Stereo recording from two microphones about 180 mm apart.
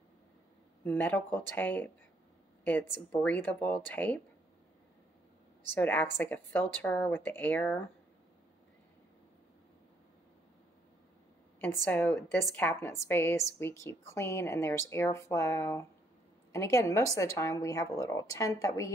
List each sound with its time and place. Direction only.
0.8 s a woman's voice: 10° left (ahead or behind)
5.8 s a woman's voice: 10° left (ahead or behind)
11.8 s a woman's voice: 10° left (ahead or behind)